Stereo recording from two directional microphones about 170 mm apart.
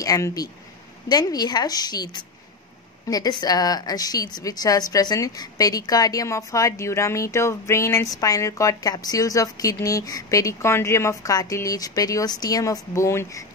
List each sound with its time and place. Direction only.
0.0 s a woman's voice: 20° left (ahead or behind)
3.1 s a woman's voice: 25° left (ahead or behind)